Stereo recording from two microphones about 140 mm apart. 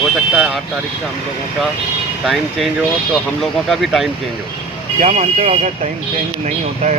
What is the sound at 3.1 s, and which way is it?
Speech, centre (ahead or behind).